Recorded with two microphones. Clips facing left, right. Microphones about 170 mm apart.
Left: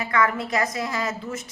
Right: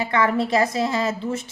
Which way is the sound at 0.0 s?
30° right (ahead or behind).